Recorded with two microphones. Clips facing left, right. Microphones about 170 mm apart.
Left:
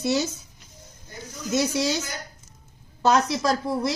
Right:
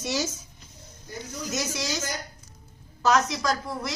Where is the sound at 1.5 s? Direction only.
30° left (ahead or behind).